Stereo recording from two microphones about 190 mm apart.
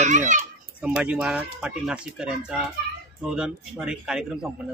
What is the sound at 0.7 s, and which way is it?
A man's voice, 5° right (ahead or behind).